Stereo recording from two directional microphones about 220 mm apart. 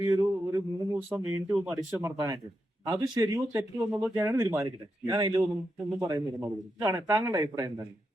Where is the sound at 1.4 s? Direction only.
5° right (ahead or behind).